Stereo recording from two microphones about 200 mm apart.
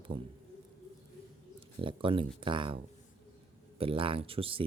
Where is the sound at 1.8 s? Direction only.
25° right (ahead or behind).